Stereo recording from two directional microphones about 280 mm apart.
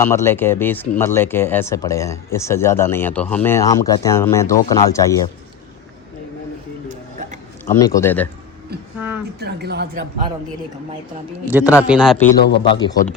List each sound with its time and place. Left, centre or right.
0.0 s speech: centre
6.8 s a sound: right
7.6 s speech: centre
9.4 s speech: right
11.5 s speech: centre
12.4 s speech: left
12.6 s speech: centre